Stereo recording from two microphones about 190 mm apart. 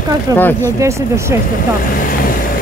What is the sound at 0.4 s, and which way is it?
Speech, 10° left (ahead or behind).